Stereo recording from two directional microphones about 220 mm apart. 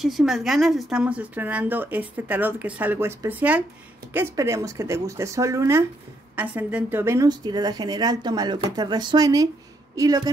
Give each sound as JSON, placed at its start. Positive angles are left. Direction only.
{"t": 0.0, "sound": "speech", "side_deg": 0}